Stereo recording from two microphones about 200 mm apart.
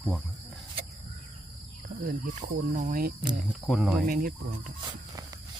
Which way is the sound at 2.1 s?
45° right (ahead or behind).